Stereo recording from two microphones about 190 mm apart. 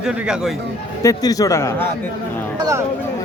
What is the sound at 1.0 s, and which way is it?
Speech, 20° left (ahead or behind).